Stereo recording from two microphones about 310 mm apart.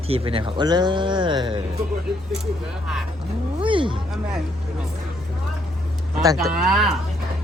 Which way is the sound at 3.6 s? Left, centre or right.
Centre.